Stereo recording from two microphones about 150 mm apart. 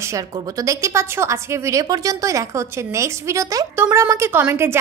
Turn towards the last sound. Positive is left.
turn(degrees=-15)  # may be behind; listen again after turning